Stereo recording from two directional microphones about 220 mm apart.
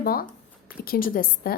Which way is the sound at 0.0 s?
40° left (ahead or behind).